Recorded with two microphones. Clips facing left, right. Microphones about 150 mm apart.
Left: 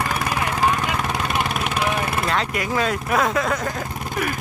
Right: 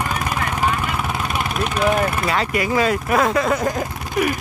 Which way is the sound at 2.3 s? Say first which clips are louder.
Right 3 dB; 5° right (ahead or behind).